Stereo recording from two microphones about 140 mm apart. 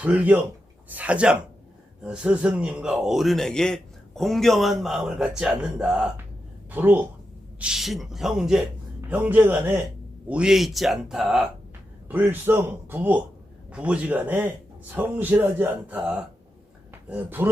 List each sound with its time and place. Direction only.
0.0 s a man's voice: 10° right (ahead or behind)
7.6 s a man's voice: 5° right (ahead or behind)